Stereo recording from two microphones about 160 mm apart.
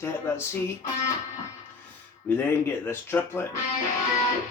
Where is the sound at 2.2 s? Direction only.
15° left (ahead or behind).